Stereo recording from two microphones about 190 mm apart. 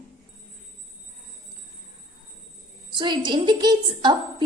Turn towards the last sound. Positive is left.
turn(degrees=-20)  # may be behind; listen again after turning